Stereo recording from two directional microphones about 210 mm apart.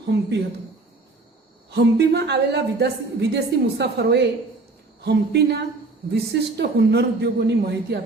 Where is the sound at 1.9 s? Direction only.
50° right (ahead or behind).